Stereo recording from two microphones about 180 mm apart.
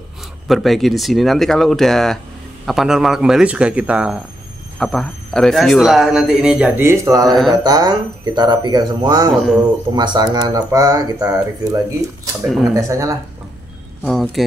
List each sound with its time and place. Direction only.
0.5 s a man's voice: centre (ahead or behind); by 7.2 s 20° right (ahead or behind)
7.2 s a man's voice: centre (ahead or behind)
7.6 s speech: 25° right (ahead or behind)
9.3 s a man's voice: centre (ahead or behind)
9.9 s speech: 25° right (ahead or behind)
12.4 s a man's voice: centre (ahead or behind)
12.7 s speech: 20° right (ahead or behind)